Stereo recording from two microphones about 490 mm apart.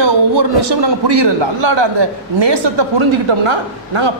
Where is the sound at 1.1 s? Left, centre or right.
Right.